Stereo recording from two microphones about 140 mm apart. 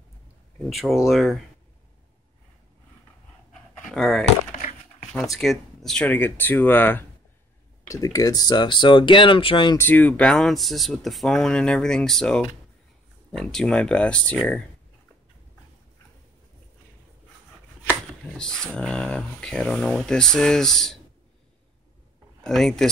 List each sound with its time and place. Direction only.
0.7 s speech: centre (ahead or behind)
3.9 s speech: 5° left (ahead or behind)
4.6 s a sound: 70° left (ahead or behind)
5.3 s speech: centre (ahead or behind)
6.0 s speech: 15° left (ahead or behind)
7.9 s speech: 25° left (ahead or behind)
9.8 s speech: 10° left (ahead or behind)
17.8 s speech: 5° left (ahead or behind)
22.4 s speech: 5° left (ahead or behind)